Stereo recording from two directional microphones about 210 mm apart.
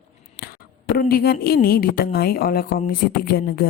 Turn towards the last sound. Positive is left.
turn(degrees=45)  # may be behind; listen again after turning